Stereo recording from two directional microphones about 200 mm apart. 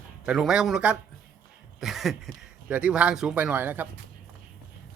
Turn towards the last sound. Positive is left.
turn(degrees=-10)  # may be behind; listen again after turning